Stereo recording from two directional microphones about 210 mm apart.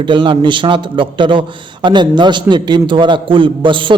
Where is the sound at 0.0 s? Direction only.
25° right (ahead or behind).